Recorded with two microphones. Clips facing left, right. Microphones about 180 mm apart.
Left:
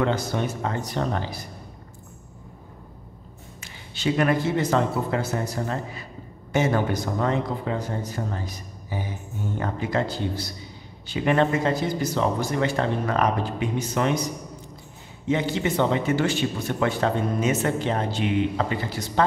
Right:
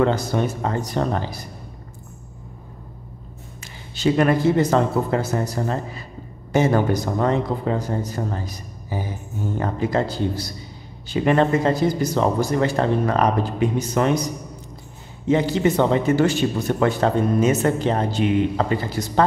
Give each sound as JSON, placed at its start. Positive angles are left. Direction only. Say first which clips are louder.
{"t": 0.0, "sound": "speech", "louder": "right 4 dB", "side_deg": -40}
{"t": 3.6, "sound": "speech", "louder": "right 5 dB", "side_deg": -40}
{"t": 9.6, "sound": "speech", "louder": "right 4 dB", "side_deg": -35}
{"t": 15.2, "sound": "speech", "louder": "right 5 dB", "side_deg": -40}